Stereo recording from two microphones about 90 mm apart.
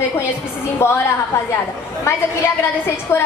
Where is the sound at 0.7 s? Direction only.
30° left (ahead or behind).